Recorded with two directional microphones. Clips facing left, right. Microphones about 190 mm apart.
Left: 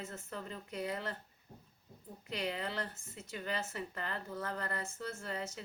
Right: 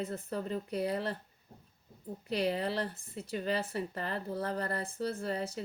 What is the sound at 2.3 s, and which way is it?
Speech, 35° right (ahead or behind).